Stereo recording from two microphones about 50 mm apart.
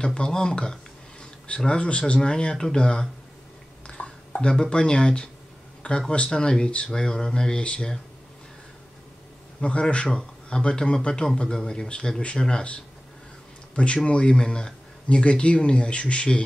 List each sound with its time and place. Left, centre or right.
0.0 s a man's voice: centre
4.0 s a sound: left
4.4 s a man's voice: centre
9.6 s a man's voice: left
14.0 s speech: left